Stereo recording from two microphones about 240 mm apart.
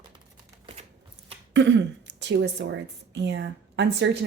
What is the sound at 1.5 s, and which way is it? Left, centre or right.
A woman's voice, right.